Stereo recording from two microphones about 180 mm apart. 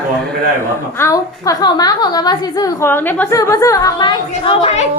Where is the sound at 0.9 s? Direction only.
15° left (ahead or behind); by 4.9 s 35° left (ahead or behind).